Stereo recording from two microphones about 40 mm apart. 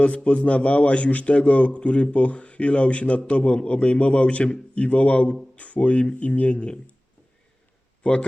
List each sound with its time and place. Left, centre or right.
0.3 s a man's voice: left